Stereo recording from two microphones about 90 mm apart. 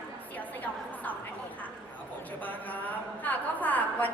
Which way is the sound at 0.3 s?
20° left (ahead or behind).